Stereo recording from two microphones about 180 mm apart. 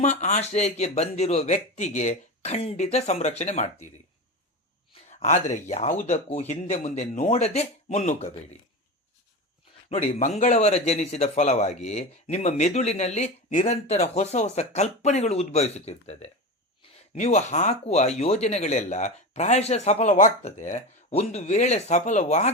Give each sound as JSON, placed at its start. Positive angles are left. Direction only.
{"t": 0.0, "sound": "speech", "side_deg": 40}
{"t": 5.0, "sound": "speech", "side_deg": 40}
{"t": 9.9, "sound": "speech", "side_deg": 35}